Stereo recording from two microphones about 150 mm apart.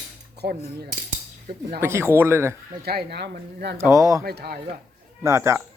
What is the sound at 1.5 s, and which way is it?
Speech, 70° right (ahead or behind).